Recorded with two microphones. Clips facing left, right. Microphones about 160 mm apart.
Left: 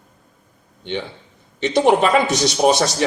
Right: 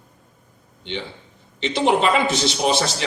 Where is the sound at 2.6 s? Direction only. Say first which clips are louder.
Left 5 dB; 50° left (ahead or behind).